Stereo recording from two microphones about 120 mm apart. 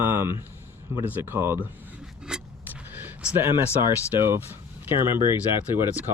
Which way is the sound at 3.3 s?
20° right (ahead or behind).